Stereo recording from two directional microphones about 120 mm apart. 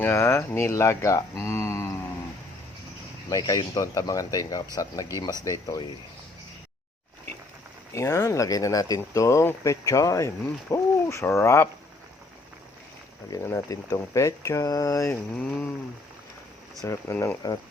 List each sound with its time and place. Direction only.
0.0 s speech: 20° left (ahead or behind)
3.2 s speech: 30° left (ahead or behind)
7.9 s speech: 25° left (ahead or behind)
13.4 s speech: 25° left (ahead or behind)
15.4 s a sound: 10° left (ahead or behind)
16.8 s speech: 25° left (ahead or behind)